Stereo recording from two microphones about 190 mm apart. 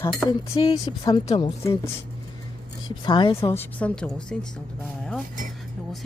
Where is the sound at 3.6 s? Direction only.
5° left (ahead or behind).